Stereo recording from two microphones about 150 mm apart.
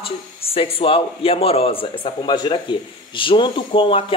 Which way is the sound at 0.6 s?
40° left (ahead or behind).